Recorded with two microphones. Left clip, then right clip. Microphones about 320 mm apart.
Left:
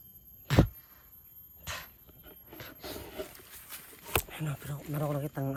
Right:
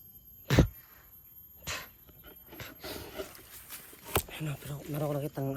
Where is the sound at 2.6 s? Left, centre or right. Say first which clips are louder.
Right 1 dB; centre.